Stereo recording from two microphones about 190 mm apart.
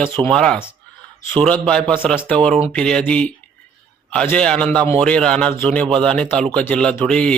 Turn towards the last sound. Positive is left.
turn(degrees=5)  # may be behind; listen again after turning